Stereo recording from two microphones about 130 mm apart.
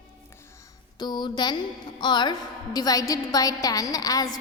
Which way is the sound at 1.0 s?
35° left (ahead or behind).